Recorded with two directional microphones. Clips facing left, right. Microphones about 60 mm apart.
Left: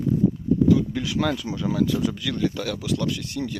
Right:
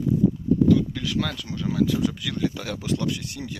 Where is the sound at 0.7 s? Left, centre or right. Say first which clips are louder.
Even; centre.